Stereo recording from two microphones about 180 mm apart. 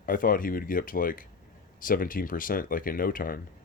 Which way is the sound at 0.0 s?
50° left (ahead or behind).